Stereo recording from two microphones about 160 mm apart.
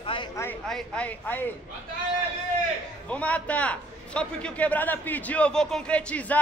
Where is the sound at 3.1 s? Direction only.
10° left (ahead or behind).